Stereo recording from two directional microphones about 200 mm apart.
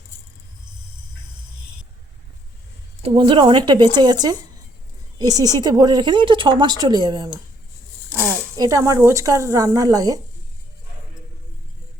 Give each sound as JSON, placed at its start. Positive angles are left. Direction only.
{"t": 3.0, "sound": "a woman's voice", "side_deg": -25}
{"t": 8.5, "sound": "speech", "side_deg": -20}